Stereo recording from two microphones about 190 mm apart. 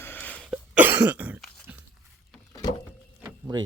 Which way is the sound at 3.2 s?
20° right (ahead or behind).